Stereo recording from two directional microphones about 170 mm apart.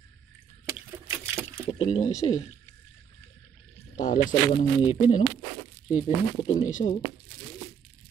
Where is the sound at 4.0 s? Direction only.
50° left (ahead or behind).